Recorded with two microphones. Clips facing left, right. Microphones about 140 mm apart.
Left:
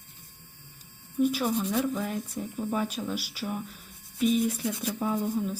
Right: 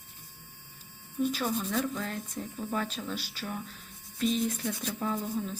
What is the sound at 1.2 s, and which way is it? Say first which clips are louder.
Speech: left 4 dB; 10° left (ahead or behind).